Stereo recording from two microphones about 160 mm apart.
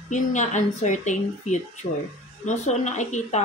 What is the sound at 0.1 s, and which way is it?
Speech, 50° left (ahead or behind).